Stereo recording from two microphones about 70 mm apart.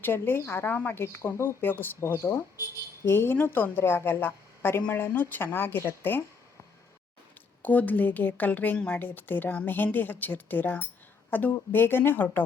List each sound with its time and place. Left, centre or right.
0.0 s a woman's voice: left
2.0 s a woman's voice: left
7.6 s a woman's voice: left
9.0 s a woman's voice: left